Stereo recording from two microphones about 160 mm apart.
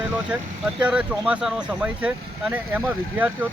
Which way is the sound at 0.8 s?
5° right (ahead or behind).